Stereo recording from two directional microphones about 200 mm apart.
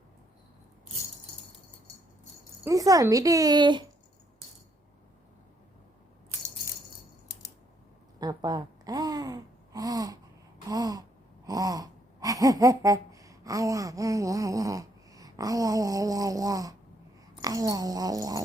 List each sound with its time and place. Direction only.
2.6 s speech: 15° right (ahead or behind)
8.2 s a sound: 20° right (ahead or behind)
11.4 s gasp: 20° right (ahead or behind)
17.4 s speech: 20° right (ahead or behind)